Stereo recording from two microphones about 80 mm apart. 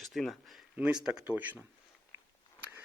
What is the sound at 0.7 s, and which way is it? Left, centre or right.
Speech, centre.